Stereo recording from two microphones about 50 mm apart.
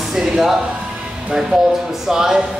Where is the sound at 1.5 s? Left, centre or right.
Centre.